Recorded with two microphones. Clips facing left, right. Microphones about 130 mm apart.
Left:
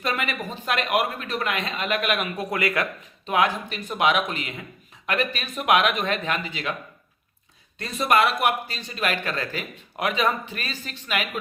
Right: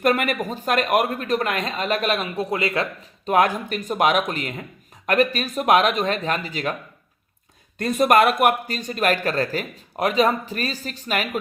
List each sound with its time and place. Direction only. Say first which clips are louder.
0.0 s speech: right 7 dB; 50° right (ahead or behind); by 3.1 s 25° right (ahead or behind)
3.2 s speech: right 4 dB; 45° right (ahead or behind)
7.8 s speech: right 5 dB; 50° right (ahead or behind)